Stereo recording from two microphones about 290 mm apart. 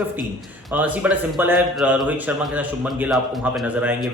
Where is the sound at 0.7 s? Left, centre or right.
Centre.